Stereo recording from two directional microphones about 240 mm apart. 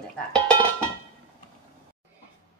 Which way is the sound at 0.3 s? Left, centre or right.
Centre.